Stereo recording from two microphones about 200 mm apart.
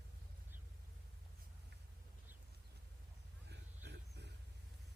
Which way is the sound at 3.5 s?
55° right (ahead or behind).